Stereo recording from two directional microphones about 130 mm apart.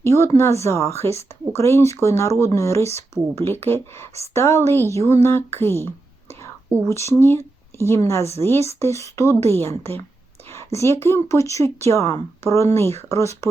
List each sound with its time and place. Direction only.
0.0 s speech: 20° left (ahead or behind)
6.8 s speech: 20° left (ahead or behind)